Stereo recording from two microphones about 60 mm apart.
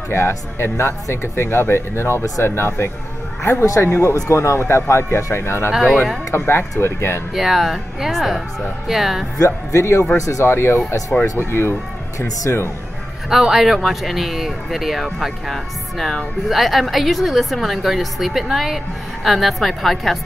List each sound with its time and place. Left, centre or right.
0.1 s speech: left
3.6 s speech: left
5.7 s a woman's voice: centre
6.3 s speech: left
7.3 s a woman's voice: centre
9.4 s speech: left
10.4 s speech: left
13.3 s a woman's voice: centre